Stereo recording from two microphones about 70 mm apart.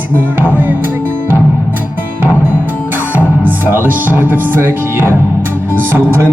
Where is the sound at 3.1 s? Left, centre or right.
Right.